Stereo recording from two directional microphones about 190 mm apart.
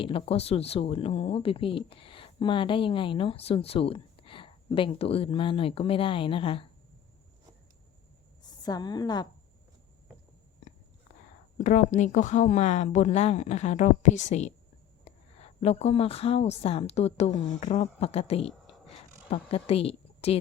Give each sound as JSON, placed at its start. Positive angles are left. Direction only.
{"t": 0.0, "sound": "speech", "side_deg": 30}
{"t": 8.4, "sound": "a woman's voice", "side_deg": 20}
{"t": 11.5, "sound": "a woman's voice", "side_deg": 40}